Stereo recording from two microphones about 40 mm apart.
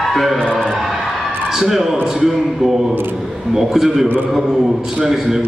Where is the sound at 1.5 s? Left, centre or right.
Centre.